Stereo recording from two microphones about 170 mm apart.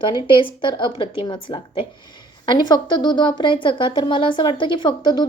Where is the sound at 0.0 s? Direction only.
30° left (ahead or behind).